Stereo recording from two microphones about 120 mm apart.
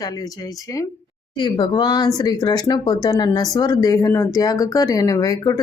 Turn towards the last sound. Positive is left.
turn(degrees=30)  # may be behind; listen again after turning